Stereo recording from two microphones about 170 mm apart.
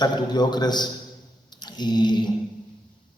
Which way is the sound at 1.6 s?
25° left (ahead or behind).